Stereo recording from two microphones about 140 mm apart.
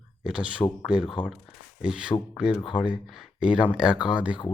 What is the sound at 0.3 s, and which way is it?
Speech, 5° right (ahead or behind).